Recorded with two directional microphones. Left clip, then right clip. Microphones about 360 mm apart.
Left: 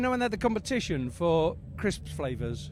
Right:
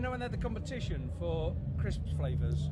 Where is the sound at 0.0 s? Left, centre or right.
Left.